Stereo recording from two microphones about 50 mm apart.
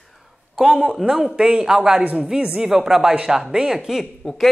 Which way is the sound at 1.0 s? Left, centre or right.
Centre.